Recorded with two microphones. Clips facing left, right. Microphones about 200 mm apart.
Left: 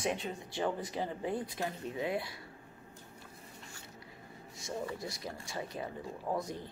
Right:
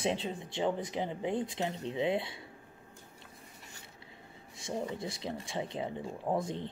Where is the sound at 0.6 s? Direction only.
20° right (ahead or behind).